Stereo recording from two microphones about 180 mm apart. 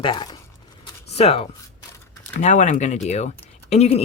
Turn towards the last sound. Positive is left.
turn(degrees=35)  # may be behind; listen again after turning